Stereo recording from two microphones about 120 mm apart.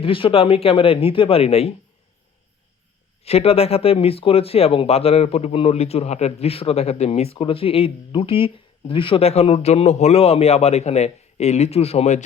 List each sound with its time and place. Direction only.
0.0 s speech: 50° left (ahead or behind)
3.2 s speech: 55° left (ahead or behind)